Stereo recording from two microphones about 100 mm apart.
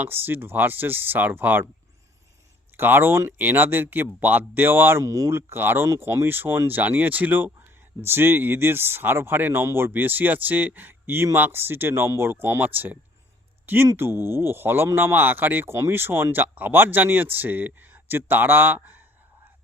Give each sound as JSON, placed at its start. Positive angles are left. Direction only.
{"t": 0.0, "sound": "speech", "side_deg": -20}
{"t": 2.7, "sound": "speech", "side_deg": -20}